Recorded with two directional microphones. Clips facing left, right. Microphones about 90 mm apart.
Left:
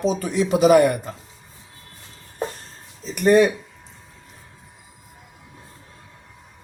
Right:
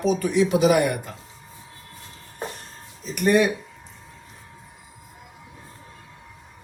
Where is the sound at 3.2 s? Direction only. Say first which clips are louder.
Left 4 dB; 35° left (ahead or behind).